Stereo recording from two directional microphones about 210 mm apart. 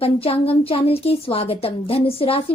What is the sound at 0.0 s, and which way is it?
A woman's voice, 25° left (ahead or behind).